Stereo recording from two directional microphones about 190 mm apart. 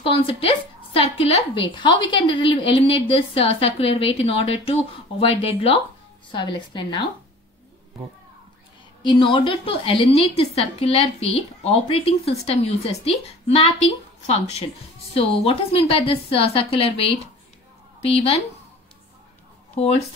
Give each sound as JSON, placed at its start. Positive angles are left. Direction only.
{"t": 0.0, "sound": "a woman's voice", "side_deg": 30}
{"t": 9.0, "sound": "a woman's voice", "side_deg": 25}